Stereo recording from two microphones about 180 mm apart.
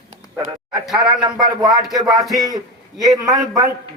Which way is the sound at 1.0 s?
25° right (ahead or behind).